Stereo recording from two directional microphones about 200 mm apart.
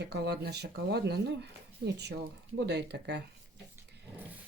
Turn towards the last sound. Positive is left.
turn(degrees=-55)  # may be behind; listen again after turning